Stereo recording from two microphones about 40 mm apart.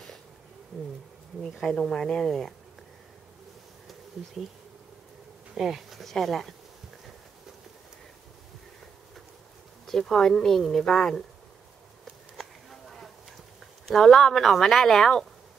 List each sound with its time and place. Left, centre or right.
1.9 s speech: centre
5.6 s speech: centre
9.8 s speech: centre
12.0 s a sound: centre
13.8 s speech: centre